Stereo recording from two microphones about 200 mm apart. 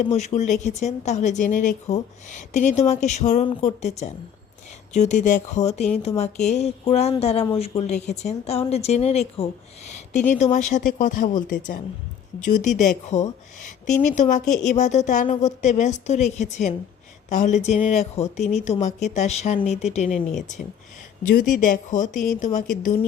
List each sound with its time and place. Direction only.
0.0 s speech: 35° left (ahead or behind)
12.4 s speech: 40° left (ahead or behind)
21.3 s speech: 40° left (ahead or behind)